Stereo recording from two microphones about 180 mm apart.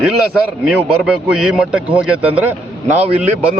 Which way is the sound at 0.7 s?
5° right (ahead or behind).